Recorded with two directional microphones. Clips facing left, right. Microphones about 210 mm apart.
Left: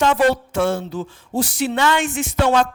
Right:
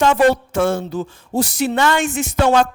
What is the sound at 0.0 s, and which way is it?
Speech, 45° right (ahead or behind).